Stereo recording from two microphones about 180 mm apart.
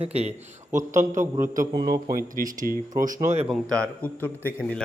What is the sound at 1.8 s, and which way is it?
Speech, 55° right (ahead or behind).